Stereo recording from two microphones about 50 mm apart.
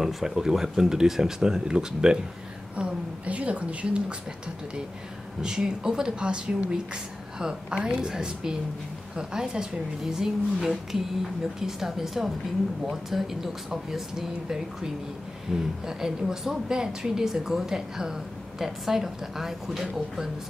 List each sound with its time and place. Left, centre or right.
0.0 s a woman's voice: centre
2.7 s a woman's voice: right
5.4 s a woman's voice: centre